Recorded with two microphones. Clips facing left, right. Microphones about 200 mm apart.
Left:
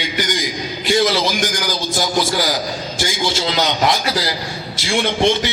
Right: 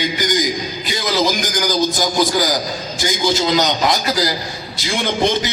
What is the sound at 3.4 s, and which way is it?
Speech, 45° right (ahead or behind).